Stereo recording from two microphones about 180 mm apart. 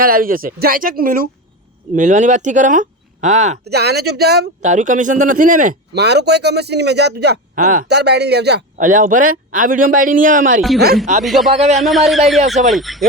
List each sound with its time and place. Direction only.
0.0 s a man's voice: 50° right (ahead or behind)
3.6 s speech: 65° right (ahead or behind)
4.6 s a man's voice: 45° right (ahead or behind)
5.9 s a man's voice: 70° right (ahead or behind)
7.5 s speech: 45° right (ahead or behind)
7.9 s a man's voice: 65° right (ahead or behind)
8.8 s a man's voice: 45° right (ahead or behind)
11.2 s speech: centre (ahead or behind)
11.5 s speech: 35° right (ahead or behind)
11.8 s speech: centre (ahead or behind)